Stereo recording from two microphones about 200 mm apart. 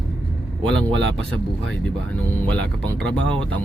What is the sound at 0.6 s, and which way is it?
Speech, 5° left (ahead or behind).